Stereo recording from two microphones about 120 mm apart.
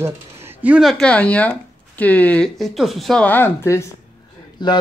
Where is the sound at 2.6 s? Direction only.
Centre (ahead or behind).